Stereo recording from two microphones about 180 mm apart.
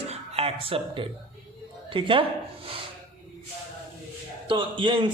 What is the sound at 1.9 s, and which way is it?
Speech, 30° right (ahead or behind).